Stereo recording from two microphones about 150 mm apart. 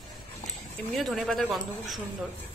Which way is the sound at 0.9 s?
Centre (ahead or behind).